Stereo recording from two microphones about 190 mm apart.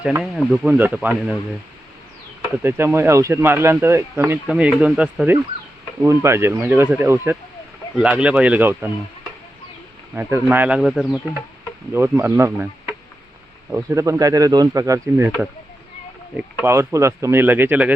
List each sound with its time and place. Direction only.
0.0 s speech: 5° right (ahead or behind)
2.6 s speech: 10° right (ahead or behind)
10.2 s speech: 10° right (ahead or behind)
11.9 s speech: 10° right (ahead or behind)
13.9 s speech: 15° right (ahead or behind)
16.4 s speech: 10° right (ahead or behind)